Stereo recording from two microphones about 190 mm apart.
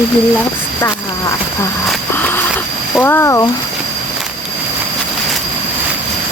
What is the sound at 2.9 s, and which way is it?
Speech, 10° left (ahead or behind).